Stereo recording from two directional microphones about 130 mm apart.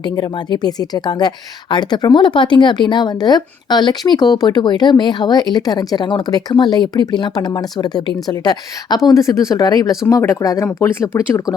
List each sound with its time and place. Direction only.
0.0 s speech: 35° left (ahead or behind)